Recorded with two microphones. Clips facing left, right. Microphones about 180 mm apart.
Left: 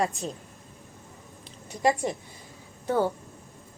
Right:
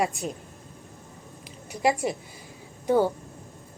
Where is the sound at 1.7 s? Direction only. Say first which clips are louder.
Even; 10° right (ahead or behind).